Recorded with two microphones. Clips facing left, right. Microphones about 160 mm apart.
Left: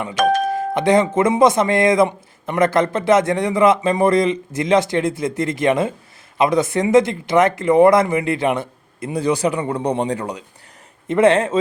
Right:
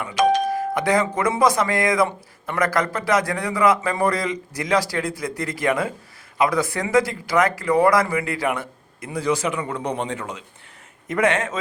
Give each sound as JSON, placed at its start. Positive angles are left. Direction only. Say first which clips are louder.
{"t": 0.2, "sound": "speech", "louder": "left 1 dB", "side_deg": -15}
{"t": 0.5, "sound": "speech", "louder": "left 5 dB", "side_deg": 25}